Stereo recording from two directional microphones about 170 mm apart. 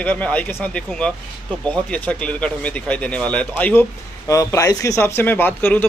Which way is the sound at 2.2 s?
5° left (ahead or behind).